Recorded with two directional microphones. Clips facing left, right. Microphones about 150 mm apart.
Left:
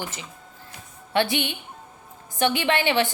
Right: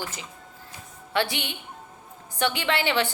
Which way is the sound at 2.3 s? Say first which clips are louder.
Left 3 dB; 15° left (ahead or behind).